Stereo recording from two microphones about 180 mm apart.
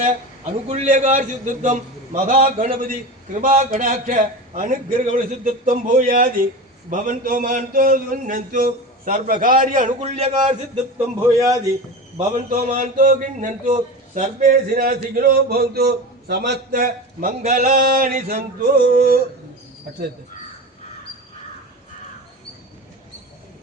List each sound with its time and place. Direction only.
0.4 s a man's voice: 40° right (ahead or behind)
10.9 s a man's voice: 15° right (ahead or behind)
12.2 s a man's voice: 50° right (ahead or behind)
18.6 s a man's voice: 60° right (ahead or behind)